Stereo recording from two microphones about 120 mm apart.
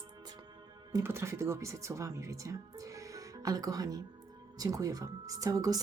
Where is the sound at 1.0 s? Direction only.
20° right (ahead or behind).